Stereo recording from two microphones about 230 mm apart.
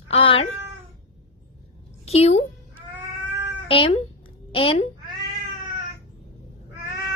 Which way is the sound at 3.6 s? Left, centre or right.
Left.